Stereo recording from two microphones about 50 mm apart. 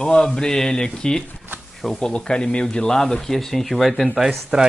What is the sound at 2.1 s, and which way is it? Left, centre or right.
Speech, centre.